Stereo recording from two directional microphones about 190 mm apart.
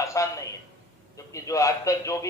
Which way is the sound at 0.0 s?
15° left (ahead or behind).